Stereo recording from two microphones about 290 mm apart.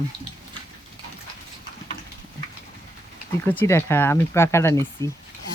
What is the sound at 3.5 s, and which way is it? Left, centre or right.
Speech, centre.